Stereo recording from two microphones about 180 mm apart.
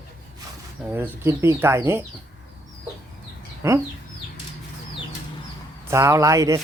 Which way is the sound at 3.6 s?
15° right (ahead or behind).